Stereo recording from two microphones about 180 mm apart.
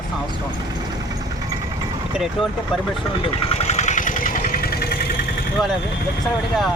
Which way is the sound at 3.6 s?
40° left (ahead or behind).